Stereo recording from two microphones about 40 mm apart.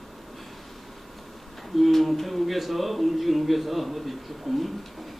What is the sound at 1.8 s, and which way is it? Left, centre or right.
Speech, centre.